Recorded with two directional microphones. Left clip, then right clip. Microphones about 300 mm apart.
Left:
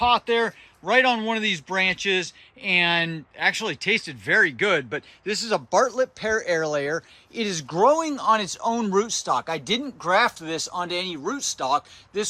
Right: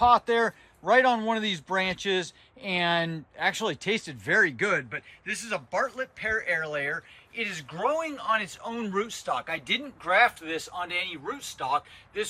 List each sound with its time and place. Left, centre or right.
0.0 s speech: centre